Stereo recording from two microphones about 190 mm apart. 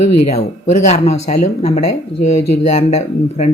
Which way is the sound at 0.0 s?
35° left (ahead or behind).